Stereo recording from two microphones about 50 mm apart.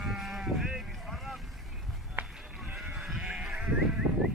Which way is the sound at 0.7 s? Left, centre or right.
Centre.